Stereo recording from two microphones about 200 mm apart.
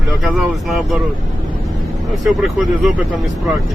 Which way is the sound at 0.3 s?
Centre (ahead or behind).